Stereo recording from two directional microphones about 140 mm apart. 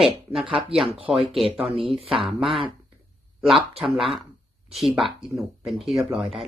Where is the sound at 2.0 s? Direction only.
40° right (ahead or behind).